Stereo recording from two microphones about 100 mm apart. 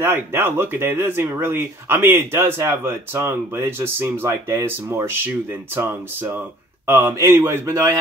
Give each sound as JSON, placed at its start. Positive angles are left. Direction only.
{"t": 0.0, "sound": "speech", "side_deg": -25}
{"t": 6.9, "sound": "speech", "side_deg": -25}